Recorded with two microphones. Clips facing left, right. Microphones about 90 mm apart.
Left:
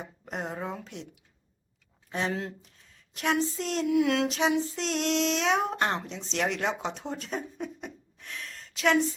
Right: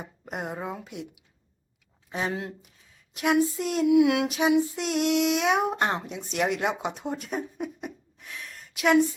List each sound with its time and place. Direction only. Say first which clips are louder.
0.0 s speech: right 1 dB; 10° right (ahead or behind)
2.0 s child singing: right 1 dB; 5° right (ahead or behind)